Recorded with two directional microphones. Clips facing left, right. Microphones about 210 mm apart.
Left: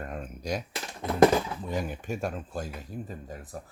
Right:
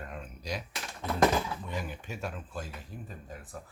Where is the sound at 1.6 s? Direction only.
45° left (ahead or behind).